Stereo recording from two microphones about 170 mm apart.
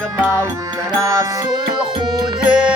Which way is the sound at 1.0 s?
20° right (ahead or behind).